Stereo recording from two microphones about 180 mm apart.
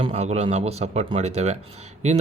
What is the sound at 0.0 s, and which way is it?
Speech, 35° right (ahead or behind).